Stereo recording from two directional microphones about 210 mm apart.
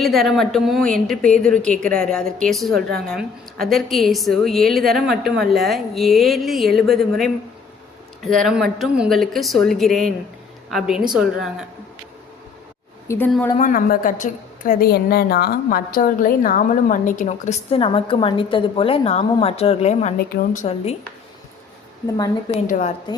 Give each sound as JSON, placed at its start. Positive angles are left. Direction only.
{"t": 0.0, "sound": "a woman's voice", "side_deg": 0}
{"t": 13.1, "sound": "speech", "side_deg": 10}
{"t": 13.6, "sound": "a woman's voice", "side_deg": 40}
{"t": 20.1, "sound": "a woman's voice", "side_deg": 45}
{"t": 22.0, "sound": "speech", "side_deg": 20}
{"t": 22.6, "sound": "a woman's voice", "side_deg": 40}